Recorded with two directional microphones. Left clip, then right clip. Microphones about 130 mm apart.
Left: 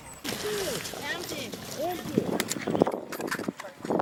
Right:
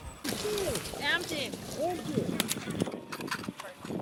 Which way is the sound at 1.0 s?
25° right (ahead or behind).